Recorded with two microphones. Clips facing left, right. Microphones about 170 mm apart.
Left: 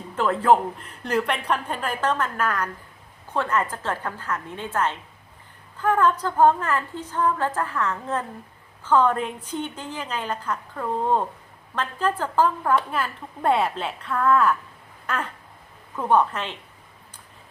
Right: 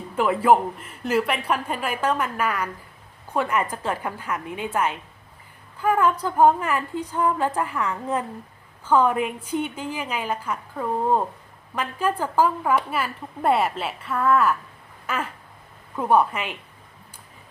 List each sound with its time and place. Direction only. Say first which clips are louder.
0.2 s a woman's voice: right 1 dB; 10° right (ahead or behind)
15.0 s a sound: even; 5° right (ahead or behind)
16.0 s a woman's voice: right 1 dB; 10° right (ahead or behind)